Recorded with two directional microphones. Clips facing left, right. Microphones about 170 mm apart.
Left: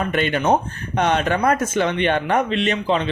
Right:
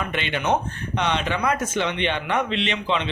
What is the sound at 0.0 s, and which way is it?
Speech, 45° left (ahead or behind).